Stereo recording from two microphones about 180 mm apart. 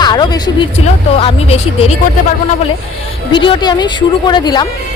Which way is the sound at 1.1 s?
35° left (ahead or behind).